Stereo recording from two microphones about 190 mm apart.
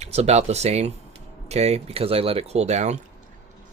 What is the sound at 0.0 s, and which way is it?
Speech, 35° right (ahead or behind).